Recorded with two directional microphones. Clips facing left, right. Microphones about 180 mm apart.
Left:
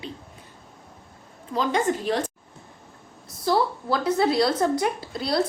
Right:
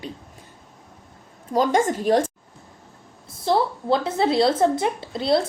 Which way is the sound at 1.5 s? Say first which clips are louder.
Right 4 dB; 45° right (ahead or behind).